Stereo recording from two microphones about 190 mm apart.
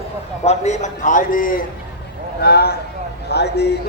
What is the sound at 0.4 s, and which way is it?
A man's voice, 35° left (ahead or behind).